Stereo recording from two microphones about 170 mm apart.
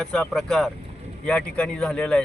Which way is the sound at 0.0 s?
5° left (ahead or behind).